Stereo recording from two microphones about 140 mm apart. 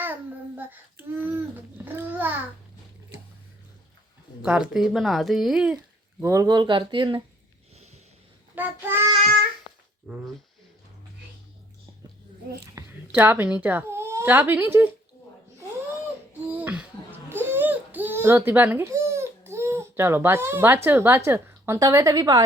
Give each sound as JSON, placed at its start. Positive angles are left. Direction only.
{"t": 0.0, "sound": "child singing", "side_deg": -15}
{"t": 4.4, "sound": "speech", "side_deg": -5}
{"t": 6.2, "sound": "speech", "side_deg": -25}
{"t": 8.5, "sound": "child singing", "side_deg": -15}
{"t": 10.1, "sound": "speech", "side_deg": -5}
{"t": 12.7, "sound": "a woman's voice", "side_deg": -15}
{"t": 16.6, "sound": "a sound", "side_deg": -10}